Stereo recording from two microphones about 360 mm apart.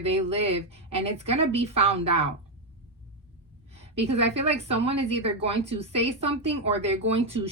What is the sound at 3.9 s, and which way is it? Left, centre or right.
A woman's voice, centre.